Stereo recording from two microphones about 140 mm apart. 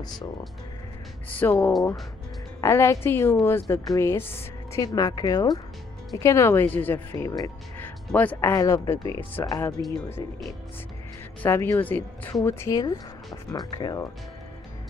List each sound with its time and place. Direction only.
1.3 s a woman's voice: 10° left (ahead or behind)
8.1 s speech: 10° left (ahead or behind)
11.4 s a woman's voice: 15° left (ahead or behind)